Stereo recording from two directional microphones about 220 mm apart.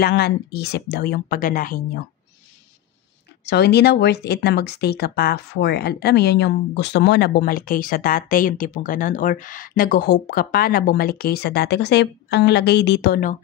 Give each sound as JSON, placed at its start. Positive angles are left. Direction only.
{"t": 0.0, "sound": "speech", "side_deg": 45}
{"t": 3.4, "sound": "speech", "side_deg": 50}